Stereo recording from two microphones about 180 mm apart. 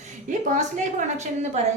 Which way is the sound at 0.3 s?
45° right (ahead or behind).